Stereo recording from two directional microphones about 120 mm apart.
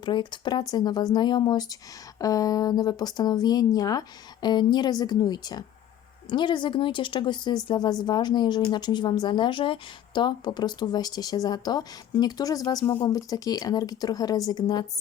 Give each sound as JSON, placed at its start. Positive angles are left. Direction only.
{"t": 0.0, "sound": "speech", "side_deg": 40}